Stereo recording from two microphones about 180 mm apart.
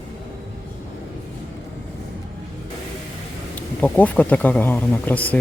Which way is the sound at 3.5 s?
10° left (ahead or behind).